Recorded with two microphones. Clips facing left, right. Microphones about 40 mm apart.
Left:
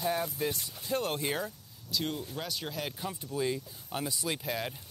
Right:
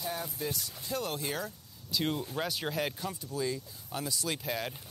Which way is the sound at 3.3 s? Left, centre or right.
Left.